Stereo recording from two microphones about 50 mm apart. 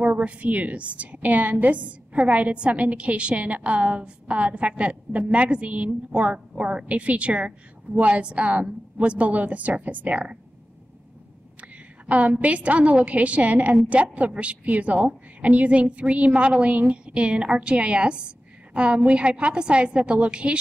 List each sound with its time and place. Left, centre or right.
0.0 s a woman's voice: right
11.6 s a woman's voice: right